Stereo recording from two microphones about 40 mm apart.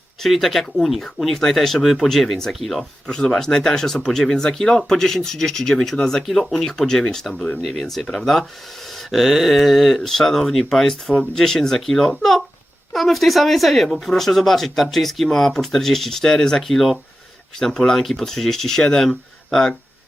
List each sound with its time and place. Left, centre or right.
0.2 s speech: centre
3.1 s speech: centre
6.2 s speech: centre